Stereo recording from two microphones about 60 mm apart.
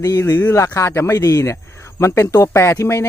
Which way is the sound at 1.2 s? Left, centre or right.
Left.